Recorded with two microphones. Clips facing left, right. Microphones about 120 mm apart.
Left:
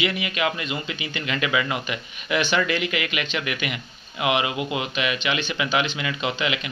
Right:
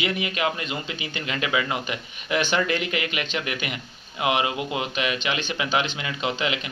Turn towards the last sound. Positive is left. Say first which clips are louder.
# even
turn(degrees=-35)  # may be behind; listen again after turning